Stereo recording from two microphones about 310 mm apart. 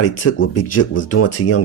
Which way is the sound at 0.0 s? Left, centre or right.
Left.